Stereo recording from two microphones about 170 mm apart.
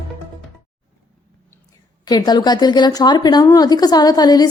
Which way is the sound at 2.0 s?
25° left (ahead or behind).